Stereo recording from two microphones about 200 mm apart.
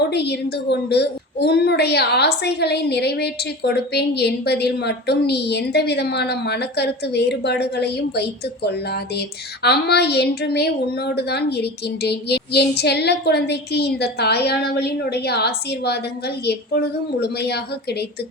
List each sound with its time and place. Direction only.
0.1 s a woman's voice: 55° left (ahead or behind)